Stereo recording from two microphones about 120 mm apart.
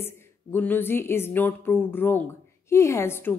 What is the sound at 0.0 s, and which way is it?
Speech, 15° left (ahead or behind).